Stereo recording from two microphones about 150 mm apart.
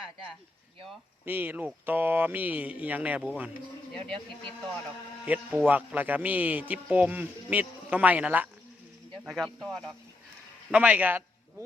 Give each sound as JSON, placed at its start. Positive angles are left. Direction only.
{"t": 1.2, "sound": "speech", "side_deg": -15}
{"t": 5.2, "sound": "speech", "side_deg": -10}
{"t": 9.2, "sound": "speech", "side_deg": 0}
{"t": 10.7, "sound": "speech", "side_deg": -10}